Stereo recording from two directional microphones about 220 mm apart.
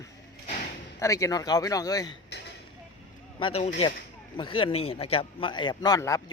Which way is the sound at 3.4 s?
25° left (ahead or behind).